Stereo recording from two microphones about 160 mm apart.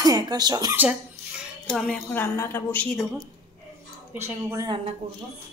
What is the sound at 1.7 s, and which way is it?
A woman's voice, 5° left (ahead or behind).